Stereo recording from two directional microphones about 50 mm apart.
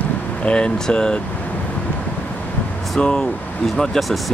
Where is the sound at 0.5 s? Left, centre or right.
Centre.